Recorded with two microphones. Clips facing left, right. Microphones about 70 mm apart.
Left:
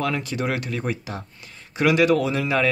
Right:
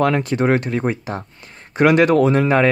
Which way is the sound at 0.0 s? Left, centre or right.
Right.